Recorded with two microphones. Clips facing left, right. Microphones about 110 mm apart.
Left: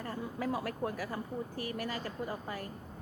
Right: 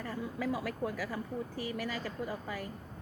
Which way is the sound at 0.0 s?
30° left (ahead or behind).